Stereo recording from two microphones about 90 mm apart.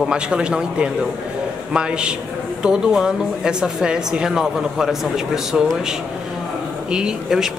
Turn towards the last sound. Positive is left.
turn(degrees=-5)  # may be behind; listen again after turning